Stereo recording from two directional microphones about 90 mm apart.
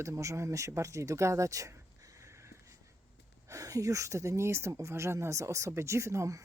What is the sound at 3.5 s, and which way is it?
Speech, 40° right (ahead or behind).